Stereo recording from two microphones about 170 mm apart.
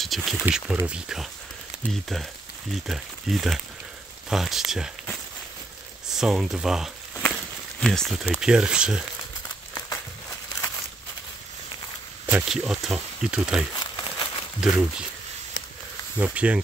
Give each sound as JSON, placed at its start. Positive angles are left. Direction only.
{"t": 0.0, "sound": "speech", "side_deg": 0}
{"t": 6.1, "sound": "speech", "side_deg": -5}
{"t": 12.3, "sound": "speech", "side_deg": -5}
{"t": 13.7, "sound": "crumpling", "side_deg": 25}
{"t": 14.6, "sound": "speech", "side_deg": -5}
{"t": 16.2, "sound": "speech", "side_deg": -5}